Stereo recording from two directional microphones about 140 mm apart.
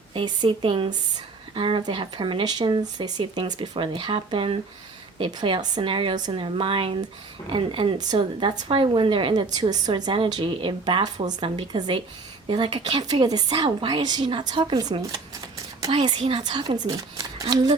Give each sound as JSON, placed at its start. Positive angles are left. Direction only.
{"t": 0.1, "sound": "a woman's voice", "side_deg": -40}